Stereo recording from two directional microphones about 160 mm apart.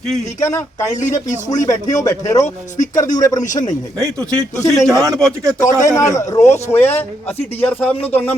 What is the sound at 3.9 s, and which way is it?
Speech, 20° right (ahead or behind).